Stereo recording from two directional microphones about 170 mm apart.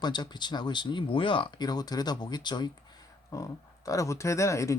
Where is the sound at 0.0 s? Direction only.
25° left (ahead or behind).